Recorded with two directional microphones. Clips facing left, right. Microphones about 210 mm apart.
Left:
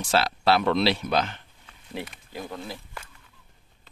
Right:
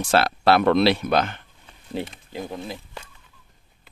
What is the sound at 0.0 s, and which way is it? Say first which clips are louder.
Speech: right 4 dB; 55° right (ahead or behind).